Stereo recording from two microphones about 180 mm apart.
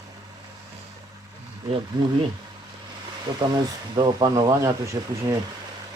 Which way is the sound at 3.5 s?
25° right (ahead or behind).